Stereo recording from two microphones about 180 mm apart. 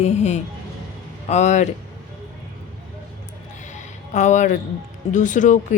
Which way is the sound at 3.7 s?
40° left (ahead or behind).